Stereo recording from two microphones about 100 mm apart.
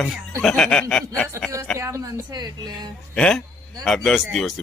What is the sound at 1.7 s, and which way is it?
A woman's voice, 30° right (ahead or behind).